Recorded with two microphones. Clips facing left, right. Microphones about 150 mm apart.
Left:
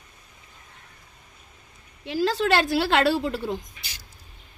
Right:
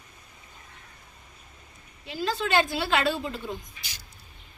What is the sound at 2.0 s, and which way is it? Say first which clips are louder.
A woman's voice: left 6 dB; 90° left.